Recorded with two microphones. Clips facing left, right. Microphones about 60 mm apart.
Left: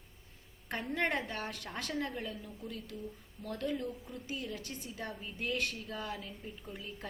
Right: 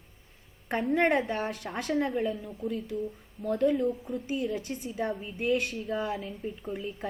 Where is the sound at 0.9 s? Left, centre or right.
Right.